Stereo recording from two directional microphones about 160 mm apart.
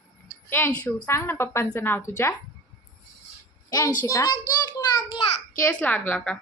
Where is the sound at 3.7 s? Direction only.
20° left (ahead or behind).